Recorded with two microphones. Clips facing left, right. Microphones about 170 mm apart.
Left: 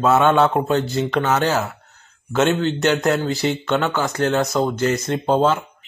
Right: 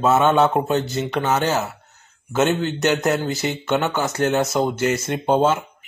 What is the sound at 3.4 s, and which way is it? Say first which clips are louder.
Speech: left 1 dB; 5° right (ahead or behind).